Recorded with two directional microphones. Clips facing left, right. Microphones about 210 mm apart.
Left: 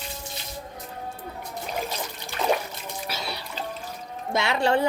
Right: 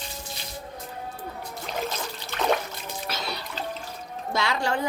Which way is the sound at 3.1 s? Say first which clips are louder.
Right 1 dB; 10° left (ahead or behind).